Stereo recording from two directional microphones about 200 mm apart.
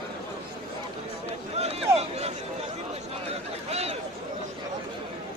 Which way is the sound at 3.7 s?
30° right (ahead or behind).